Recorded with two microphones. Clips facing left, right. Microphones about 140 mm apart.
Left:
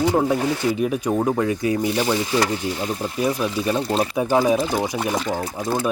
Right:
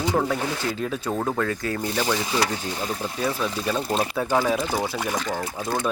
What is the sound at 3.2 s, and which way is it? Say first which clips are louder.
Speech: left 5 dB; 15° left (ahead or behind).